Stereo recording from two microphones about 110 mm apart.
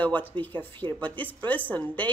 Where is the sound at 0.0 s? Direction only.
15° left (ahead or behind).